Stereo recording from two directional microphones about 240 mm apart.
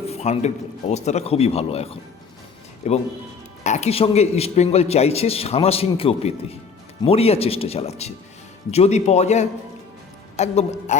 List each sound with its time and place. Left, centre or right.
0.1 s a man's voice: left